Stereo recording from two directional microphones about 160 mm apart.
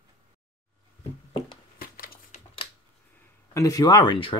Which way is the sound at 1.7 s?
65° left (ahead or behind).